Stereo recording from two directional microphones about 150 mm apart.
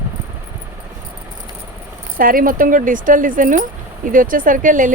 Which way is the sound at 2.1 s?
70° right (ahead or behind).